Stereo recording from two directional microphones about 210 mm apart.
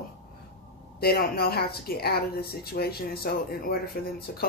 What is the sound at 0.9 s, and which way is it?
Speech, 50° left (ahead or behind).